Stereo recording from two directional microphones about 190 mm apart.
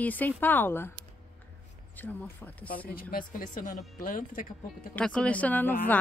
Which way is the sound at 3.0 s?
50° left (ahead or behind).